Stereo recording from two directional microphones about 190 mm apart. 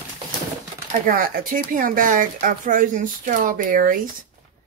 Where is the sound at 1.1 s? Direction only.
50° right (ahead or behind).